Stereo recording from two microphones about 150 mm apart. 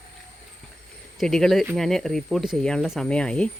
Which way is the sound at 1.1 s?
5° left (ahead or behind).